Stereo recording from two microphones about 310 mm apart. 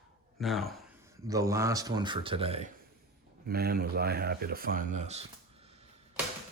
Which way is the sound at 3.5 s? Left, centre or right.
Right.